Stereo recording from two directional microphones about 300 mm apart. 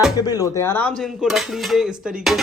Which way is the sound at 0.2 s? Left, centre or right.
Centre.